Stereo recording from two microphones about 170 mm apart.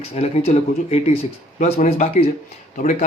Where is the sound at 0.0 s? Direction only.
40° left (ahead or behind).